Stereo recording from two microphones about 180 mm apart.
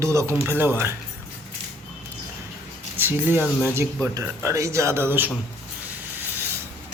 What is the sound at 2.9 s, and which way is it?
Speech, 10° right (ahead or behind).